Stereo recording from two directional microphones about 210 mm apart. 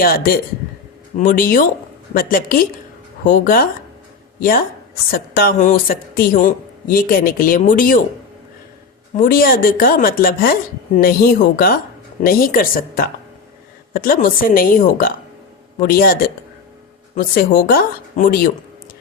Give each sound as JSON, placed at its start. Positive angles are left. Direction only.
{"t": 0.0, "sound": "a woman's voice", "side_deg": 45}
{"t": 9.1, "sound": "speech", "side_deg": 40}